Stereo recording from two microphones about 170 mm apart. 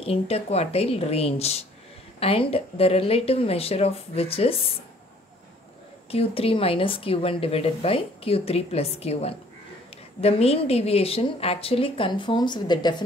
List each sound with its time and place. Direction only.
0.0 s speech: 35° left (ahead or behind)
6.1 s speech: 35° left (ahead or behind)